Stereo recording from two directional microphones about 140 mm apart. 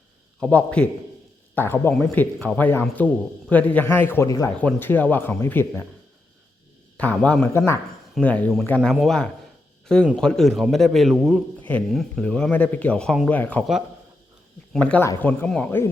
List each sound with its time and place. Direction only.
0.3 s speech: 5° left (ahead or behind); by 4.5 s 25° left (ahead or behind)
4.6 s speech: 10° left (ahead or behind)
6.9 s a man's voice: 10° left (ahead or behind)
14.7 s speech: 10° left (ahead or behind)